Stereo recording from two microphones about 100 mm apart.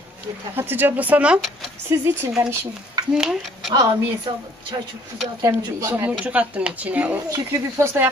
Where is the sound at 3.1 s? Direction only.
5° right (ahead or behind).